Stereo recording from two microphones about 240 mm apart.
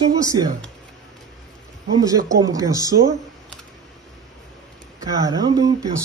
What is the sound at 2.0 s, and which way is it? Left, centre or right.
Speech, centre.